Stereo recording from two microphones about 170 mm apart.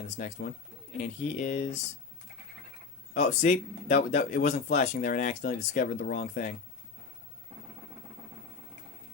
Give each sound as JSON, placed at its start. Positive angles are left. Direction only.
{"t": 0.2, "sound": "speech", "side_deg": 50}
{"t": 3.2, "sound": "speech", "side_deg": 45}